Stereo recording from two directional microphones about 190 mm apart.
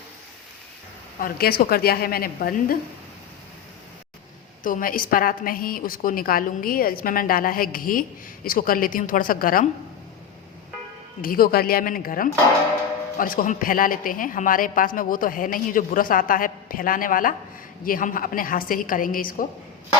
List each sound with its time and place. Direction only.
1.2 s a woman's voice: 55° left (ahead or behind)
4.6 s a woman's voice: 45° left (ahead or behind)
11.2 s a woman's voice: 50° left (ahead or behind)